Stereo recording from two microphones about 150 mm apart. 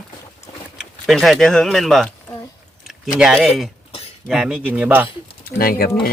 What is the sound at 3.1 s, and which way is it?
Speech, centre (ahead or behind).